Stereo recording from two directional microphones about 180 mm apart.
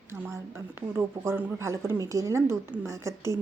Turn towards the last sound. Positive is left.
turn(degrees=-15)  # may be behind; listen again after turning